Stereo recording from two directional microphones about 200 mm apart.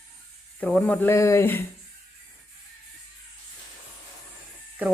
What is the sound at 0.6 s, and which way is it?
Speech, 5° left (ahead or behind).